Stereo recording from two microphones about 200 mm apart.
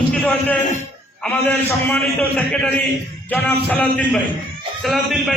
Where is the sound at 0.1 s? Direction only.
10° left (ahead or behind).